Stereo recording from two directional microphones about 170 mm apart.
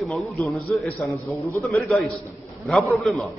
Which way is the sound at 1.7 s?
10° left (ahead or behind).